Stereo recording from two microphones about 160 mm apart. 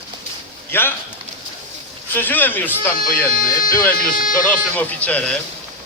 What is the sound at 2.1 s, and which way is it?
A man's voice, 10° left (ahead or behind).